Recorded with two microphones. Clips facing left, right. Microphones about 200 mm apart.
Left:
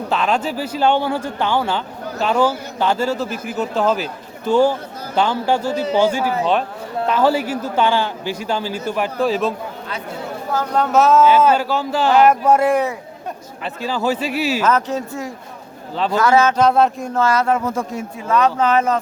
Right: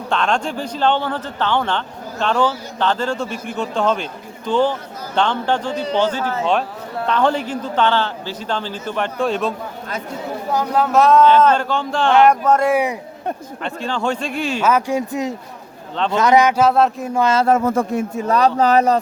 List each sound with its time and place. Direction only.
0.1 s a man's voice: 5° left (ahead or behind)
10.8 s speech: centre (ahead or behind)
12.7 s speech: 15° right (ahead or behind)
13.7 s speech: 5° left (ahead or behind)
14.6 s speech: 10° right (ahead or behind)
17.2 s speech: 20° right (ahead or behind)
17.6 s speech: 55° right (ahead or behind); by 18.9 s 35° right (ahead or behind)